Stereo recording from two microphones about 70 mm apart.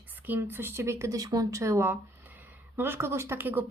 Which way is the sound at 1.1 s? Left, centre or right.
Right.